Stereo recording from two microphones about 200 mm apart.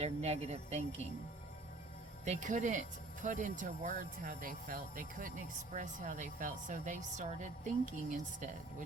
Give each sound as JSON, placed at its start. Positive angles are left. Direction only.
{"t": 0.0, "sound": "speech", "side_deg": -35}
{"t": 2.2, "sound": "speech", "side_deg": -35}